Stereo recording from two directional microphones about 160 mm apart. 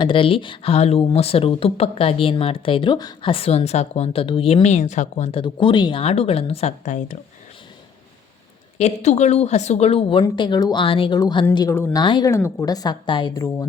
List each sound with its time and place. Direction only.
0.0 s speech: 30° left (ahead or behind); by 7.2 s 50° left (ahead or behind)
8.8 s a woman's voice: 45° left (ahead or behind); by 11.4 s 30° left (ahead or behind)
11.7 s speech: 15° left (ahead or behind)
12.0 s a woman's voice: 30° left (ahead or behind)
12.3 s a woman's voice: 15° left (ahead or behind)